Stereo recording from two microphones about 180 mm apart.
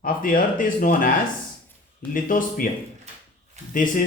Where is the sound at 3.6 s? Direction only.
40° right (ahead or behind).